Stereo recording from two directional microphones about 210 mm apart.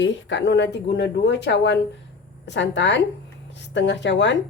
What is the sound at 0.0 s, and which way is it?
Speech, 60° left (ahead or behind).